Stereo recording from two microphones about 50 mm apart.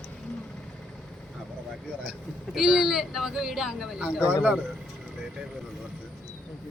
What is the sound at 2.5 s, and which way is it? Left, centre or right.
Speech, centre.